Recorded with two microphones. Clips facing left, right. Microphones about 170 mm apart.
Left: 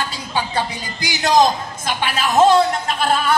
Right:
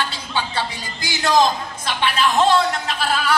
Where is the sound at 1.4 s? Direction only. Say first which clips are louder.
Left 2 dB; 45° left (ahead or behind).